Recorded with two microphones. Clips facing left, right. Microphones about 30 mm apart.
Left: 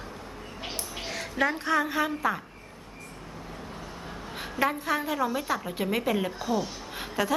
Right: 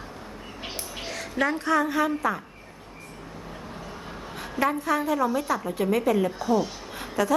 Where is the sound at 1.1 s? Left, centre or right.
Centre.